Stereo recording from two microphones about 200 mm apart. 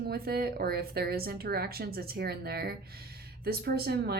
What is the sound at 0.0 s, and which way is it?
Speech, 50° right (ahead or behind).